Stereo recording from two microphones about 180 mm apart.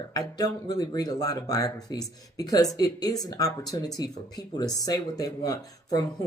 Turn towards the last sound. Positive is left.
turn(degrees=20)  # may be behind; listen again after turning